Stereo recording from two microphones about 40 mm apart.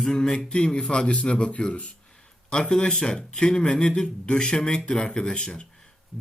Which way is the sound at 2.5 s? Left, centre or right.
Left.